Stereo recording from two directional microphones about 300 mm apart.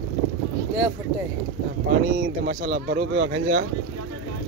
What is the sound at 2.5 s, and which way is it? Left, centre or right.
Speech, right.